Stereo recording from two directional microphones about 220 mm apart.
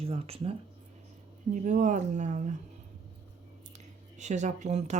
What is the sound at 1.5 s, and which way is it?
Speech, 35° right (ahead or behind).